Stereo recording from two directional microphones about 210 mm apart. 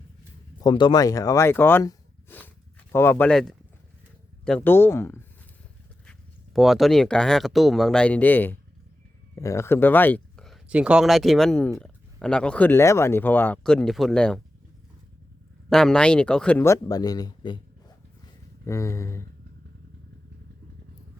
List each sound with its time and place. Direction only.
0.6 s speech: 20° left (ahead or behind)
6.1 s speech: centre (ahead or behind)
15.7 s speech: 5° left (ahead or behind)